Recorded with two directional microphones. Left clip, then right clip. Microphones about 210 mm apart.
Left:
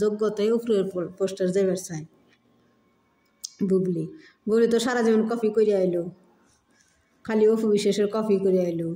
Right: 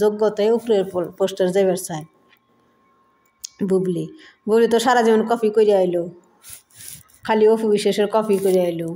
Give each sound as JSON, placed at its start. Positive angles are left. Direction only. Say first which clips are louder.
{"t": 0.0, "sound": "speech", "louder": "right 6 dB", "side_deg": 15}
{"t": 1.2, "sound": "speech", "louder": "right 6 dB", "side_deg": 5}
{"t": 3.4, "sound": "a sound", "louder": "right 4 dB", "side_deg": 5}
{"t": 4.0, "sound": "speech", "louder": "right 4 dB", "side_deg": 5}
{"t": 7.2, "sound": "speech", "louder": "right 5 dB", "side_deg": 10}